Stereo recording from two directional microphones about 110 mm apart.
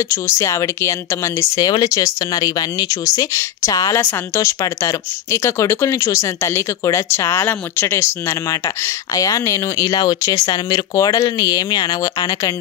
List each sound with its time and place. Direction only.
0.1 s speech: 25° left (ahead or behind)